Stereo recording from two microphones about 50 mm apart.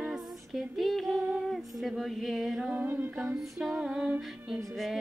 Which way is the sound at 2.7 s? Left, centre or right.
Right.